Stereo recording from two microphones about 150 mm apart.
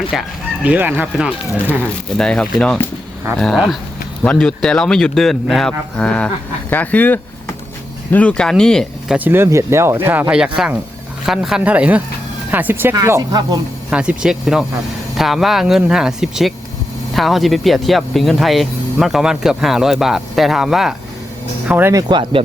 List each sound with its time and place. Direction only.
0.1 s speech: 5° right (ahead or behind)
2.1 s speech: 5° left (ahead or behind)
9.1 s speech: 15° right (ahead or behind)
13.9 s speech: 5° right (ahead or behind)
21.7 s speech: 15° right (ahead or behind)
22.1 s speech: 35° right (ahead or behind)